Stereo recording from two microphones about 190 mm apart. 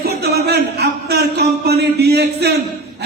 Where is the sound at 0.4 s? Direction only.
60° right (ahead or behind).